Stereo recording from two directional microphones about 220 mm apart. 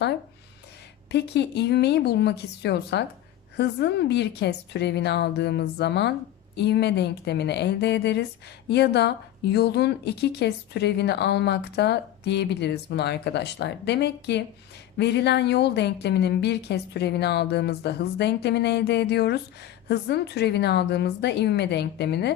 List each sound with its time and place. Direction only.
1.1 s a woman's voice: 50° left (ahead or behind)